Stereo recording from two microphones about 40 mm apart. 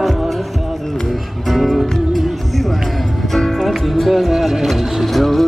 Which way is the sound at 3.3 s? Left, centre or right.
Centre.